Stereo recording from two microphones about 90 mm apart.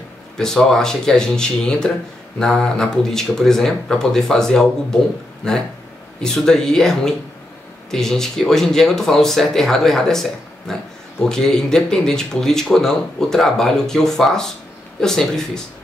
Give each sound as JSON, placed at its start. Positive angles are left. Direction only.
{"t": 0.4, "sound": "speech", "side_deg": 5}
{"t": 6.2, "sound": "speech", "side_deg": 5}
{"t": 11.2, "sound": "speech", "side_deg": 5}